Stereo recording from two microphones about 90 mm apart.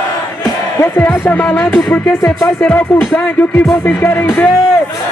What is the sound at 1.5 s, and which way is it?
Speech, 5° left (ahead or behind).